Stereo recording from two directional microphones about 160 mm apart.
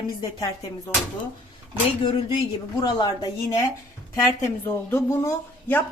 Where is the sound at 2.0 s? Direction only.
30° left (ahead or behind).